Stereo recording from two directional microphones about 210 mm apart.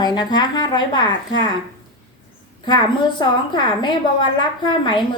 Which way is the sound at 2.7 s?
20° left (ahead or behind).